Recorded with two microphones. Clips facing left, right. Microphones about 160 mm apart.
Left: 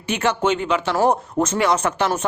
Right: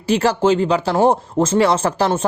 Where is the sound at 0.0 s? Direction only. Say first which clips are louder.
Right 5 dB; 35° right (ahead or behind).